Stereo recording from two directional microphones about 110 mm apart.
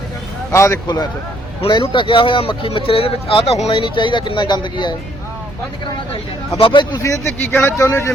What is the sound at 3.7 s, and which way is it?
Speech, 45° left (ahead or behind).